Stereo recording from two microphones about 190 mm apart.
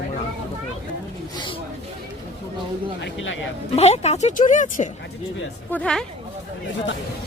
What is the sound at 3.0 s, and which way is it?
Speech, 75° left (ahead or behind).